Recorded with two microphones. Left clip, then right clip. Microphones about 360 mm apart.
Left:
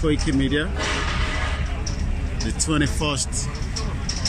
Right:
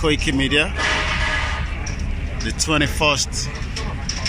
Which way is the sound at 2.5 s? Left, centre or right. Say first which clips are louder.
Right 4 dB; centre.